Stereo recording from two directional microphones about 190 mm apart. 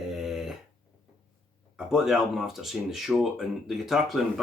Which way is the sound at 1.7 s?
5° right (ahead or behind).